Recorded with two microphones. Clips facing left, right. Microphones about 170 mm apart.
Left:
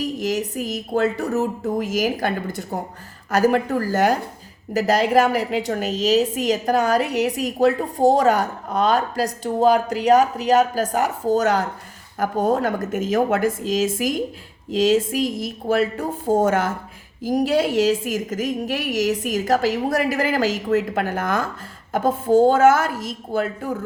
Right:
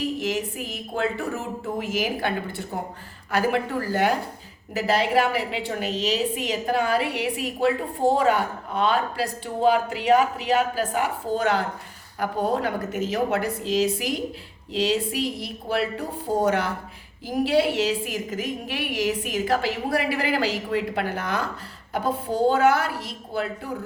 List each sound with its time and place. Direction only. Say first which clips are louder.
0.0 s a woman's voice: left 3 dB; 40° left (ahead or behind)